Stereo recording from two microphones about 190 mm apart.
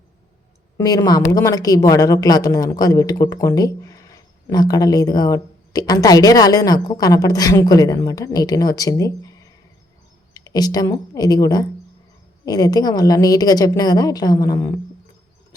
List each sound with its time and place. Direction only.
0.8 s a woman's voice: 20° left (ahead or behind)